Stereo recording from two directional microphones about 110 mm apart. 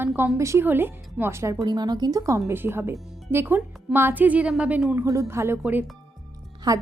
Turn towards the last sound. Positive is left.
turn(degrees=-35)  # may be behind; listen again after turning